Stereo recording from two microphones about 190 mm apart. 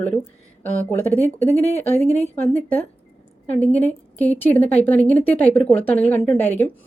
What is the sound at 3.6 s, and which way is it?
A woman's voice, 10° left (ahead or behind).